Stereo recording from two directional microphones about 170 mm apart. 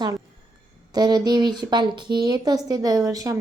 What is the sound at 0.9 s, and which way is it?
A woman's voice, 25° right (ahead or behind).